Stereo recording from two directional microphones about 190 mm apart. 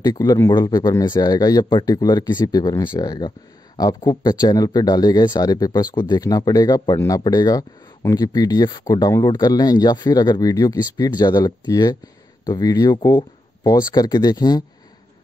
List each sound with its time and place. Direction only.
0.0 s a man's voice: 20° left (ahead or behind)